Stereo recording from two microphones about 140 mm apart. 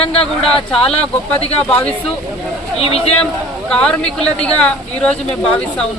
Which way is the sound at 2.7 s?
45° left (ahead or behind).